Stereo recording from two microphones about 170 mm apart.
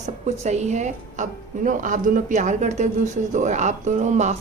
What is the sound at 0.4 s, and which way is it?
A woman's voice, 40° right (ahead or behind).